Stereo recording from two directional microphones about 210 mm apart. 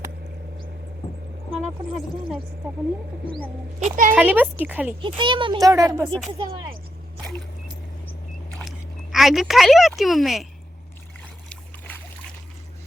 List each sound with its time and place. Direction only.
1.5 s speech: 5° right (ahead or behind)
3.8 s a child's voice: 35° right (ahead or behind)
4.1 s speech: 10° right (ahead or behind)
5.0 s a child's voice: 25° right (ahead or behind)
9.1 s a woman's voice: centre (ahead or behind)
11.4 s boat: 10° left (ahead or behind)